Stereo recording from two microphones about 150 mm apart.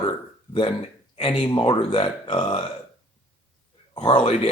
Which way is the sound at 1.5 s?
35° left (ahead or behind).